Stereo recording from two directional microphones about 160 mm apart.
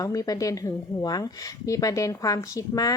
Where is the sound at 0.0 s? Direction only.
20° left (ahead or behind).